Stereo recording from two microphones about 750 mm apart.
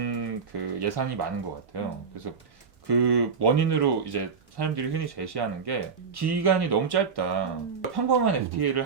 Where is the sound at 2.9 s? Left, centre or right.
Right.